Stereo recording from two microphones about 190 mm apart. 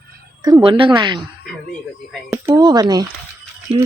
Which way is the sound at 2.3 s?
15° right (ahead or behind).